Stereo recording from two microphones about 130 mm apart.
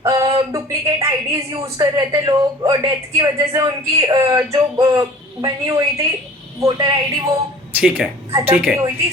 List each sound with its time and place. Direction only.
0.0 s a woman's voice: 25° right (ahead or behind)
7.8 s speech: 5° right (ahead or behind)